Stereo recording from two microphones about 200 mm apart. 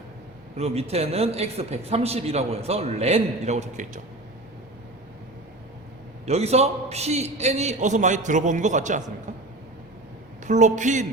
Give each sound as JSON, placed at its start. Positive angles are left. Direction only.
{"t": 0.5, "sound": "a man's voice", "side_deg": -30}
{"t": 6.2, "sound": "a man's voice", "side_deg": -30}
{"t": 10.4, "sound": "a man's voice", "side_deg": -35}